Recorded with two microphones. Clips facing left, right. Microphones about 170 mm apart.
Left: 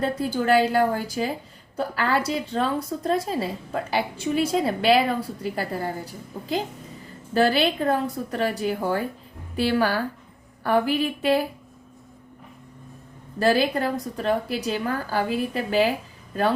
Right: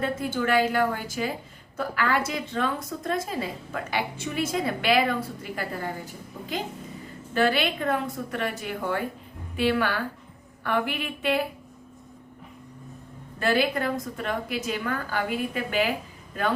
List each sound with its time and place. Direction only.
0.0 s a woman's voice: 35° left (ahead or behind)
7.3 s a woman's voice: 35° left (ahead or behind)
13.4 s a woman's voice: 35° left (ahead or behind)